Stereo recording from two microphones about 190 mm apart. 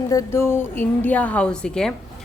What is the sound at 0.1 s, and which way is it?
A woman's voice, 15° left (ahead or behind).